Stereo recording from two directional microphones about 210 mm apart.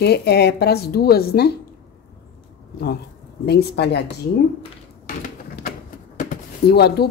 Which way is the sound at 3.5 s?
50° left (ahead or behind).